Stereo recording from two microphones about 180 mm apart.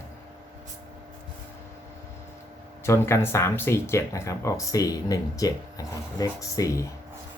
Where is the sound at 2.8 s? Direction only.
15° left (ahead or behind).